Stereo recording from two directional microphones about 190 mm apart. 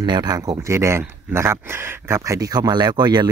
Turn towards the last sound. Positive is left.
turn(degrees=-20)  # may be behind; listen again after turning